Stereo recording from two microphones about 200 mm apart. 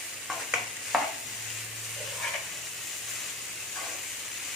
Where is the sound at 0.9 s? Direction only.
Centre (ahead or behind).